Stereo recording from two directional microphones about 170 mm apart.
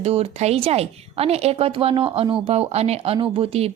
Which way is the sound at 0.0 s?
35° right (ahead or behind).